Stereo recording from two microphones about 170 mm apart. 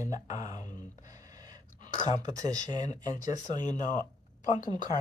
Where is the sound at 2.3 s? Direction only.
20° right (ahead or behind).